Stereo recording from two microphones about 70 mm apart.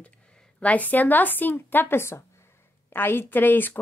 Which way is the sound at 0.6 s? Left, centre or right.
Left.